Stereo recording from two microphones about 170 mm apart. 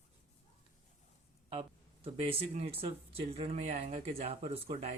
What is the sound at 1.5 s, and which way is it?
Speech, 30° right (ahead or behind).